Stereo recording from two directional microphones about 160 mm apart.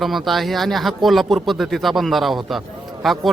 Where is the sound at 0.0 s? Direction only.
Centre (ahead or behind).